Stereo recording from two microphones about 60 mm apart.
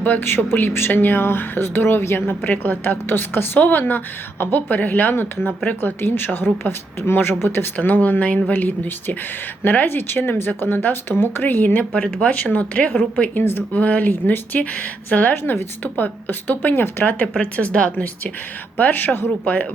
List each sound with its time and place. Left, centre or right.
0.0 s a woman's voice: left
11.9 s speech: centre
12.3 s a woman's voice: left
13.7 s a woman's voice: left